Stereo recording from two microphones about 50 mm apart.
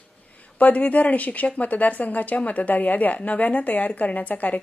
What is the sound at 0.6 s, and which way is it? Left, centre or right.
A woman's voice, left.